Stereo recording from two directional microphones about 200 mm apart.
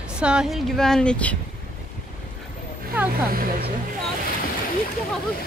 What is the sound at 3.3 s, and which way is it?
Speech, 45° right (ahead or behind).